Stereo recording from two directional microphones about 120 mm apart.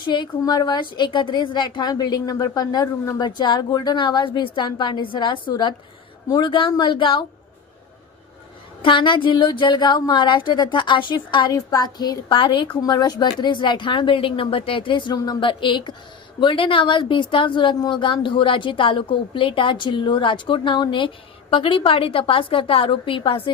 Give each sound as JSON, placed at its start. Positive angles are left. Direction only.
{"t": 0.0, "sound": "a woman's voice", "side_deg": 40}
{"t": 8.8, "sound": "a woman's voice", "side_deg": 45}